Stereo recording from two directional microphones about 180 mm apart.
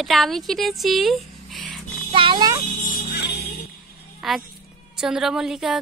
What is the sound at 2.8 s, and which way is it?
Music, 45° left (ahead or behind).